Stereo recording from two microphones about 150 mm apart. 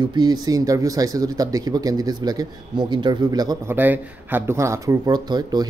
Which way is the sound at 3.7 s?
15° right (ahead or behind).